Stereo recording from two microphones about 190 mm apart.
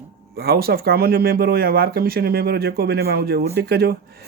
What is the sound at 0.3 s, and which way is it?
Speech, 55° right (ahead or behind).